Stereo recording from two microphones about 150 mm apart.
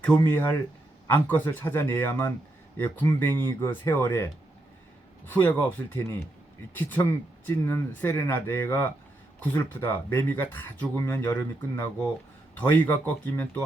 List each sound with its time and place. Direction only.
0.3 s speech: 15° left (ahead or behind)